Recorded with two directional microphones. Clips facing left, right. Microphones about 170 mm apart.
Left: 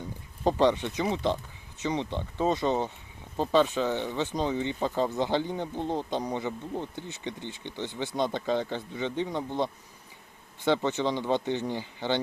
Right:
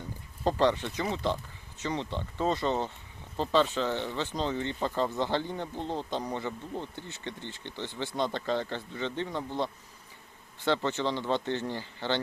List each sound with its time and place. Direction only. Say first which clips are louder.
0.4 s speech: left 2 dB; 15° left (ahead or behind)